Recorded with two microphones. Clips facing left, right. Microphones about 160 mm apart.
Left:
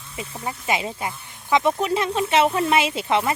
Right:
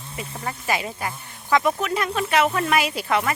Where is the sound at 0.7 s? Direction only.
20° left (ahead or behind).